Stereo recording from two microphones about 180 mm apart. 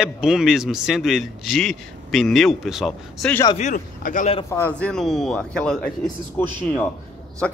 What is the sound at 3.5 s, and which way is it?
Speech, 45° left (ahead or behind).